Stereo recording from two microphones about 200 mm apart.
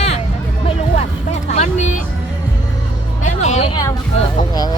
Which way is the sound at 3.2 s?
35° left (ahead or behind).